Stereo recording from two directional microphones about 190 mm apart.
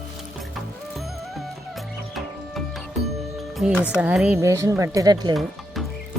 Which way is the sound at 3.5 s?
Centre (ahead or behind).